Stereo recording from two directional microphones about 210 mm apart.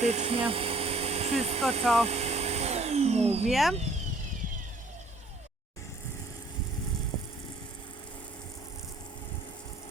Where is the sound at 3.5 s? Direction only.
Centre (ahead or behind).